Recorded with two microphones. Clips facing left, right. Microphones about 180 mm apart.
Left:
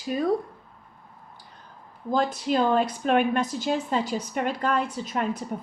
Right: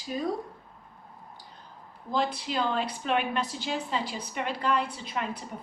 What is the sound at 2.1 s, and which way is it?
A woman's voice, 45° left (ahead or behind).